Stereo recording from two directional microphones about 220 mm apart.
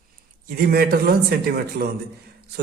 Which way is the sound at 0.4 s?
45° right (ahead or behind).